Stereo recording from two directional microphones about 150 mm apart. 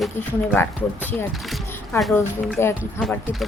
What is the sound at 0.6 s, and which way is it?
Speech, 15° left (ahead or behind).